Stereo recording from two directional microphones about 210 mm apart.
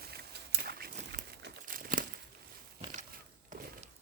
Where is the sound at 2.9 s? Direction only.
40° right (ahead or behind).